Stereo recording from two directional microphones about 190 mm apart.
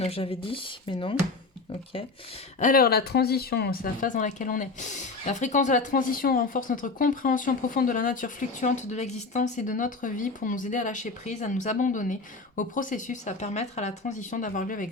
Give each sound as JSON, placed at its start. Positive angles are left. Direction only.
{"t": 0.0, "sound": "speech", "side_deg": 30}
{"t": 2.6, "sound": "speech", "side_deg": 50}